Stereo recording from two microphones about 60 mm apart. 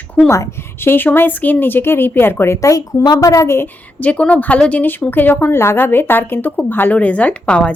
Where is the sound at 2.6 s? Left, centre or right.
Left.